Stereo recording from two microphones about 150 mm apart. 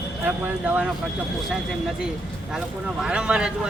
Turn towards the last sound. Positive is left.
turn(degrees=-5)  # may be behind; listen again after turning